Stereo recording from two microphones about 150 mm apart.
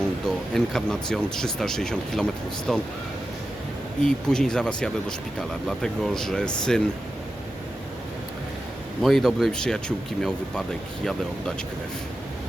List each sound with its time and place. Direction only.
0.5 s speech: centre (ahead or behind)
4.0 s speech: 5° left (ahead or behind)
9.0 s speech: centre (ahead or behind)